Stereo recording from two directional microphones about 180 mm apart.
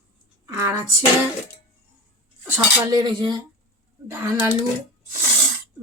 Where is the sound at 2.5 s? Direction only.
10° right (ahead or behind).